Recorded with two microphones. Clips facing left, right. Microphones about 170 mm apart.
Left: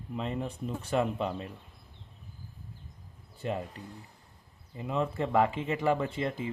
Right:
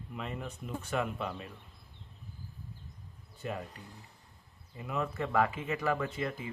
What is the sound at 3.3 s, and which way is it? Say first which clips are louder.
Speech: left 5 dB; 30° left (ahead or behind).